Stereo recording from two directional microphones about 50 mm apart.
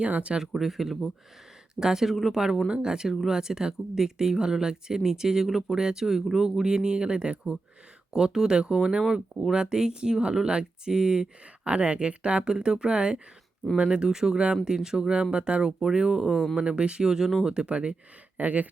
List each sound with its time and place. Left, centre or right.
0.0 s speech: right
0.5 s speech: centre
2.6 s speech: centre
9.3 s speech: centre
9.6 s speech: centre
17.5 s speech: right
18.3 s speech: right